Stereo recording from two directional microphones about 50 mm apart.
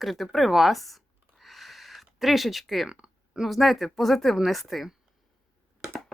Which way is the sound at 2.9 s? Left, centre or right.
Centre.